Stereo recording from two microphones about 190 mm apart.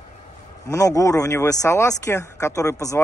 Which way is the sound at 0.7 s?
15° left (ahead or behind).